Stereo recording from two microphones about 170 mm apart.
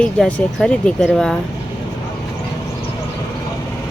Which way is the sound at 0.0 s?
5° left (ahead or behind).